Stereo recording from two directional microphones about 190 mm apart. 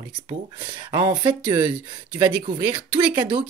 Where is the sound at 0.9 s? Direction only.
20° right (ahead or behind).